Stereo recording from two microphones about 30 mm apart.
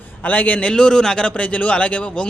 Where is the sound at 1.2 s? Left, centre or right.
Left.